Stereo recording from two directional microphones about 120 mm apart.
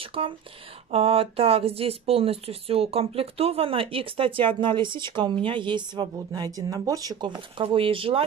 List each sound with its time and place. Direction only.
0.0 s a woman's voice: 50° right (ahead or behind)